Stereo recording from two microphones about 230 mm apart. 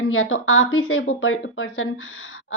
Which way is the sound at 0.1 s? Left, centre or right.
Left.